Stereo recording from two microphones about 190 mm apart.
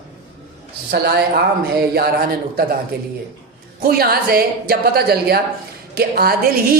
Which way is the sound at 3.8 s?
55° right (ahead or behind).